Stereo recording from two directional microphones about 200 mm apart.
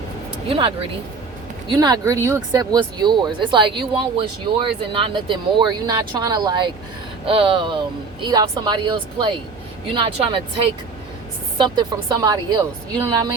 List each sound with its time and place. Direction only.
0.4 s speech: 25° right (ahead or behind)
11.5 s speech: 20° right (ahead or behind)